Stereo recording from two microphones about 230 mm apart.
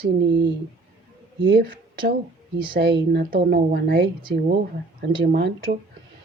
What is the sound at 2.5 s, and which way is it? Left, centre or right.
Speech, right.